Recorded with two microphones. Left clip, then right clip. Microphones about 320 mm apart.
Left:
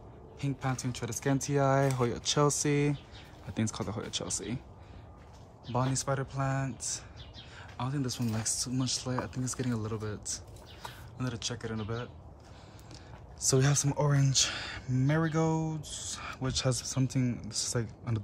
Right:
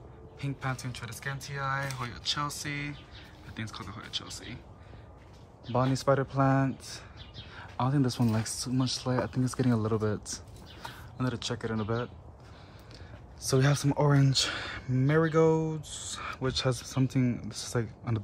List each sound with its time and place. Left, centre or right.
0.4 s speech: centre
3.6 s speech: centre
5.7 s speech: centre
13.4 s speech: centre